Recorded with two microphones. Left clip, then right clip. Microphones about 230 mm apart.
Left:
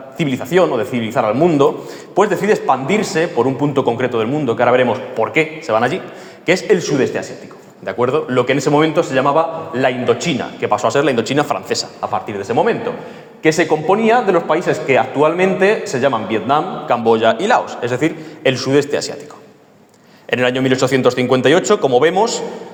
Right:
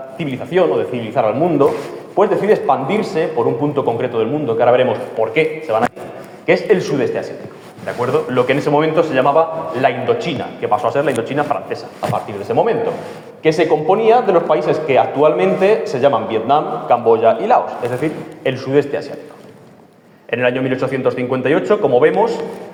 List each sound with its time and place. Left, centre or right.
0.2 s a man's voice: left
7.9 s a man's voice: left
12.3 s a man's voice: left
20.3 s a man's voice: left